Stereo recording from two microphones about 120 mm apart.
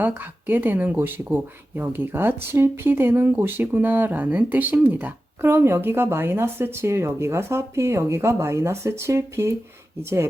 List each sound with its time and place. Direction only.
0.0 s speech: 15° right (ahead or behind)